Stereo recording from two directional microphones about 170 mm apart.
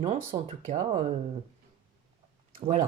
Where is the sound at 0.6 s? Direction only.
40° right (ahead or behind).